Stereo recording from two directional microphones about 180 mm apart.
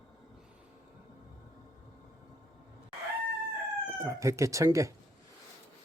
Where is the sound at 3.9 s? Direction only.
15° right (ahead or behind).